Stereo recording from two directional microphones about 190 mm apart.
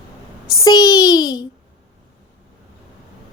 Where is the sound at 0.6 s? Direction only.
20° left (ahead or behind).